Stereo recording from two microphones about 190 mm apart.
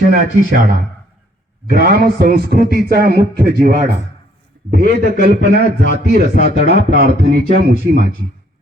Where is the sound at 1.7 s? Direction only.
55° right (ahead or behind).